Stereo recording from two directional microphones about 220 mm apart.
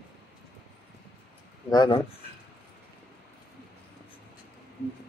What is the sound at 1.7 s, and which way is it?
Speech, 20° left (ahead or behind).